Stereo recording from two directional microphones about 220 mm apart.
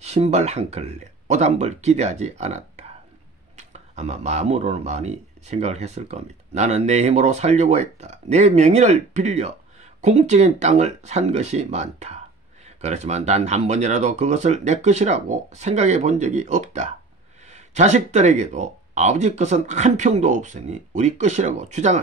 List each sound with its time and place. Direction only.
0.0 s speech: 30° right (ahead or behind)